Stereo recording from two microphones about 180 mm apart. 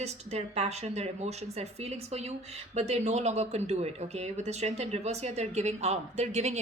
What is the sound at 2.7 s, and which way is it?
Speech, 40° right (ahead or behind).